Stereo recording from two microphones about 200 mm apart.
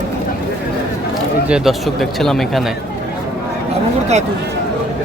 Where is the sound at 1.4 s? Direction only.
5° right (ahead or behind).